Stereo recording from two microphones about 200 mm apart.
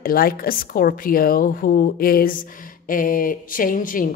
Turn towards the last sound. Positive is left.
turn(degrees=45)  # may be behind; listen again after turning